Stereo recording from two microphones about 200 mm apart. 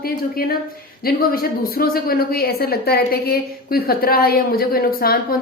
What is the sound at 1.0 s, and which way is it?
A woman's voice, 45° left (ahead or behind).